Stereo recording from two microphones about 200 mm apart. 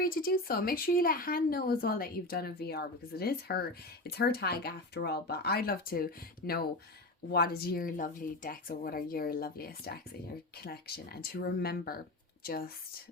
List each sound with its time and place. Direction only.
0.0 s speech: 45° left (ahead or behind)